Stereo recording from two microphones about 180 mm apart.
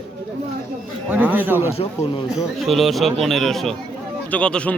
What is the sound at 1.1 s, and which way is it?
Speech, 10° right (ahead or behind).